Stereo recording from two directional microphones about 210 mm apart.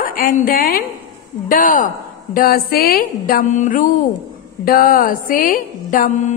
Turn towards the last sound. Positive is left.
turn(degrees=40)  # may be behind; listen again after turning